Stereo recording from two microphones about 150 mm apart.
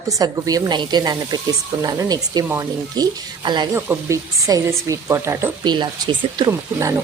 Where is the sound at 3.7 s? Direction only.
20° right (ahead or behind).